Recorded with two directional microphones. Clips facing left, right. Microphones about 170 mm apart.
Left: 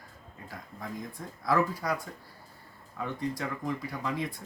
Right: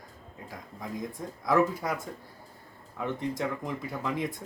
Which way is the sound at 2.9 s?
20° right (ahead or behind).